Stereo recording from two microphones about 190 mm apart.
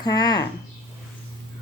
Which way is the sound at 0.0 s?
20° left (ahead or behind).